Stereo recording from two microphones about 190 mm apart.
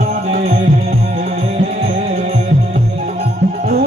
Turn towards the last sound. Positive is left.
turn(degrees=-35)  # may be behind; listen again after turning